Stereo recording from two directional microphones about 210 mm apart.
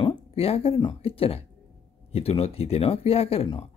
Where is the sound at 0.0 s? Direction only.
25° left (ahead or behind).